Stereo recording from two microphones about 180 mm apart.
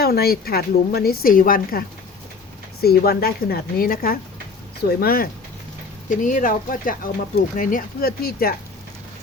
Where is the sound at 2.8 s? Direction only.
60° left (ahead or behind).